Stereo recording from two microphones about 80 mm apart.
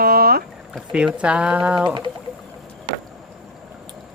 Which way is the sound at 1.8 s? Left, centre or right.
Right.